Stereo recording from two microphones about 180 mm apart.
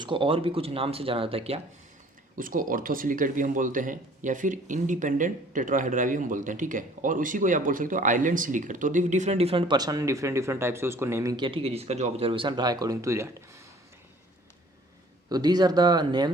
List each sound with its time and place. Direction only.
0.0 s speech: 30° right (ahead or behind)
2.4 s speech: 50° right (ahead or behind); by 13.3 s 15° right (ahead or behind)
15.3 s speech: 25° right (ahead or behind)